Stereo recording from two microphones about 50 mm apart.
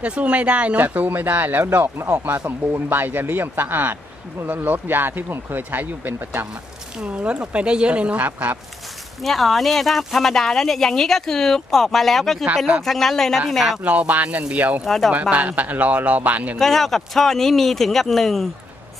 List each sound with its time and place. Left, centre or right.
0.0 s speech: right
0.7 s speech: right
2.4 s speech: right
7.0 s speech: right
9.2 s speech: centre
13.8 s speech: right
16.5 s speech: centre